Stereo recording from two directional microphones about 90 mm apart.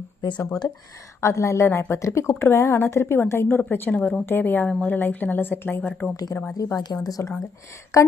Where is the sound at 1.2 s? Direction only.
35° left (ahead or behind).